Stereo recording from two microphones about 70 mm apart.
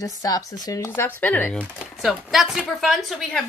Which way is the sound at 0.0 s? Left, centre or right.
Left.